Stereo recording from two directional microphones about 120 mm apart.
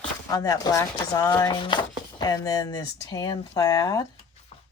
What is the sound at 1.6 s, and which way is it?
Speech, 40° left (ahead or behind).